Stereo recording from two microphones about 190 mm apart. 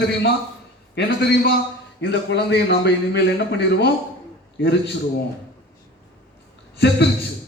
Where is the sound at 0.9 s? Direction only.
60° left (ahead or behind).